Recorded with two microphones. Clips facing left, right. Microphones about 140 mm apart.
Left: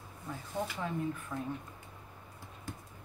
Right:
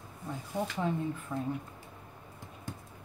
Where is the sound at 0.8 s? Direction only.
30° right (ahead or behind).